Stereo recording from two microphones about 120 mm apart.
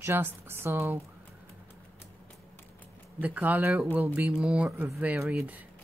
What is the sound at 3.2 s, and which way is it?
Speech, 15° right (ahead or behind).